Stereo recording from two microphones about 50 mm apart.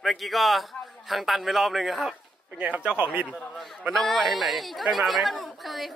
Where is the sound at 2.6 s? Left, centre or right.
Right.